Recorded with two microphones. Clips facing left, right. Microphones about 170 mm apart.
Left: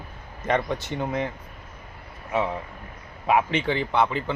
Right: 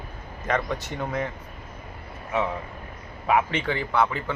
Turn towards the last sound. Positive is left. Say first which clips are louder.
# left 1 dB
turn(degrees=20)  # may be behind; listen again after turning